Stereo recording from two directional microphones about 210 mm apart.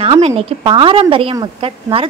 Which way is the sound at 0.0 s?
25° right (ahead or behind).